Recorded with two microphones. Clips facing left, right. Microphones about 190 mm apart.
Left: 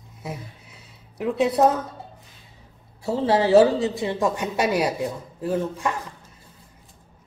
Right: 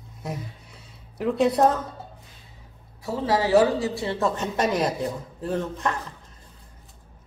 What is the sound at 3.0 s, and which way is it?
Speech, 25° left (ahead or behind).